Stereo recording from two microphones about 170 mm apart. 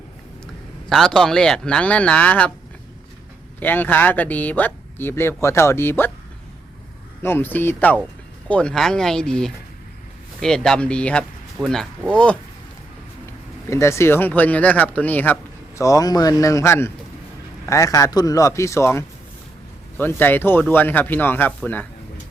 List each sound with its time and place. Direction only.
0.9 s speech: centre (ahead or behind)
3.6 s speech: 10° left (ahead or behind)
7.2 s speech: 15° left (ahead or behind)
13.7 s speech: 15° left (ahead or behind)